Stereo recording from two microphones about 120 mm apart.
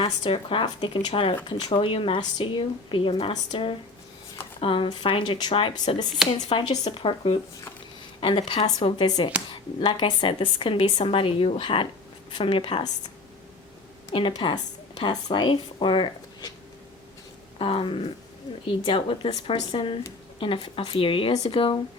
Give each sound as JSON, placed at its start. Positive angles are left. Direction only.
{"t": 0.0, "sound": "a woman's voice", "side_deg": 50}
{"t": 8.2, "sound": "a woman's voice", "side_deg": 45}
{"t": 14.1, "sound": "speech", "side_deg": 45}
{"t": 17.6, "sound": "a woman's voice", "side_deg": 45}